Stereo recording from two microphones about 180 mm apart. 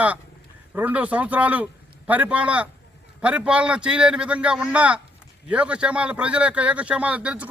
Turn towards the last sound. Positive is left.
turn(degrees=-5)  # may be behind; listen again after turning